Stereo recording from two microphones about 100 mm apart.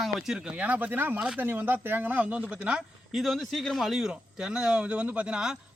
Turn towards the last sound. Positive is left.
turn(degrees=-10)  # may be behind; listen again after turning